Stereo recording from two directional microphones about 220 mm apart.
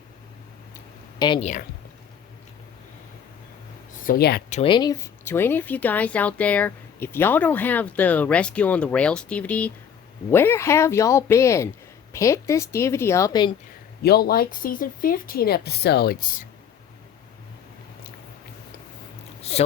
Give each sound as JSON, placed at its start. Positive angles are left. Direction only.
{"t": 1.2, "sound": "speech", "side_deg": 25}
{"t": 4.0, "sound": "speech", "side_deg": 45}
{"t": 4.4, "sound": "speech", "side_deg": 30}
{"t": 14.0, "sound": "speech", "side_deg": 45}
{"t": 19.4, "sound": "a sound", "side_deg": 25}